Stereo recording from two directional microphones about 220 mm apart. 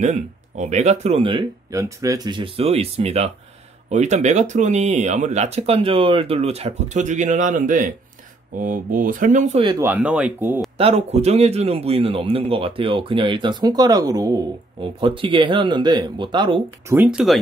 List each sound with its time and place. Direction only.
0.0 s a man's voice: 30° right (ahead or behind)
9.8 s speech: 5° right (ahead or behind)
10.8 s a man's voice: 25° right (ahead or behind)
16.9 s speech: 5° right (ahead or behind)